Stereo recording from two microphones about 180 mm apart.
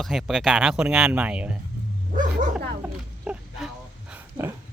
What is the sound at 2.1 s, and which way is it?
Dog, 45° right (ahead or behind).